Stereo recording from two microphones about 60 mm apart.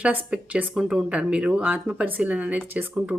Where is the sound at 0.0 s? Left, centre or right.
Centre.